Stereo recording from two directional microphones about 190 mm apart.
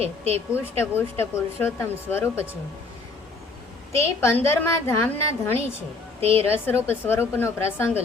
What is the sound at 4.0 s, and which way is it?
A woman's voice, 15° left (ahead or behind).